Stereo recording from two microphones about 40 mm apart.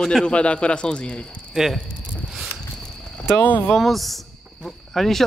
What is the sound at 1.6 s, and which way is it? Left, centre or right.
Speech, centre.